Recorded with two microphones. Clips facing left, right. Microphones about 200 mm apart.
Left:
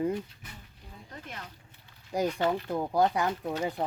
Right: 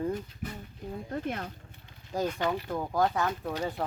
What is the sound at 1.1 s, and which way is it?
Speech, 50° right (ahead or behind).